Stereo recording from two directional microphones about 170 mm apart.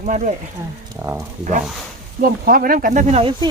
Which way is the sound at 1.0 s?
20° right (ahead or behind).